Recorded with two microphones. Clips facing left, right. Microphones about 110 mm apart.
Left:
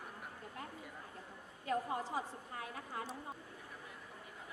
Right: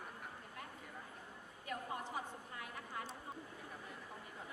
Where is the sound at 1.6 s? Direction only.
30° left (ahead or behind).